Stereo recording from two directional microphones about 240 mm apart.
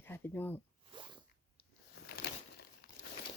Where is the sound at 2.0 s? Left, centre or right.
Left.